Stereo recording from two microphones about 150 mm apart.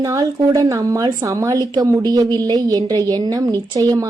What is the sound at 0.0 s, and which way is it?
A woman's voice, 20° right (ahead or behind).